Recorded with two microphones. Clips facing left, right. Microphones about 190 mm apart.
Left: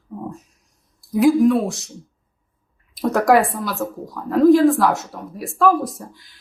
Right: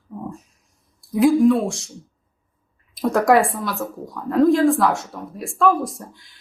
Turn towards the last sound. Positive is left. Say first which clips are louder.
# left 1 dB
turn(degrees=0)  # may be behind; listen again after turning